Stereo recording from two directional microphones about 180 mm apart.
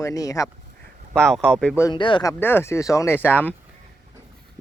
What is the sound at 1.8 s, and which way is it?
Speech, 25° left (ahead or behind).